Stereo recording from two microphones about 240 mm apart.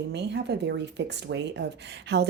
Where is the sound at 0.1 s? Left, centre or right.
Right.